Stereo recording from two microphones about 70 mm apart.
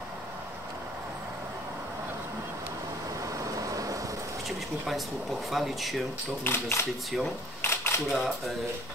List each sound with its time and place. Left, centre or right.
3.6 s vehicle: right
4.5 s speech: centre
6.4 s speech: left
7.6 s camera: left
8.1 s speech: centre